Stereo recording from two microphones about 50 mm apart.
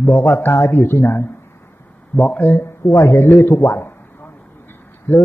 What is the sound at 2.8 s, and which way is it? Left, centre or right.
Speech, left.